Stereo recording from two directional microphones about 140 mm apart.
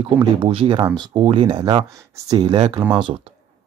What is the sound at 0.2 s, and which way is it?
Speech, 40° right (ahead or behind).